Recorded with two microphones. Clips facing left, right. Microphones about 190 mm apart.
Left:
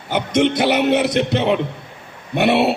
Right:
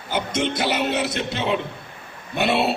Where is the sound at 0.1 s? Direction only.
65° left (ahead or behind).